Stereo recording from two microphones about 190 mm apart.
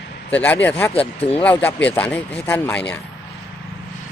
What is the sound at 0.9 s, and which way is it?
Speech, 30° left (ahead or behind).